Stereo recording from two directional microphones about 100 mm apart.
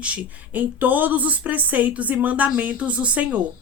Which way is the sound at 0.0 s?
15° right (ahead or behind).